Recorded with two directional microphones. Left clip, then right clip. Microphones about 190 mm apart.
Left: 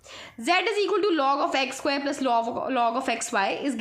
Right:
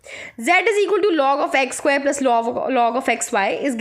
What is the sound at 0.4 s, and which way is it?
A woman's voice, 35° right (ahead or behind).